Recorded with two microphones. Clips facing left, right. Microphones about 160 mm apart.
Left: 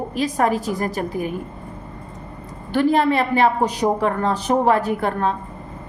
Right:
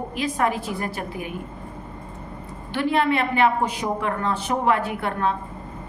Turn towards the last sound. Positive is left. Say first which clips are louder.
# left 4 dB
turn(degrees=35)  # may be behind; listen again after turning